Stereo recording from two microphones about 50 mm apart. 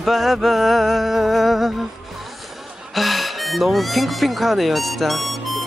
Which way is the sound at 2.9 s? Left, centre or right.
Centre.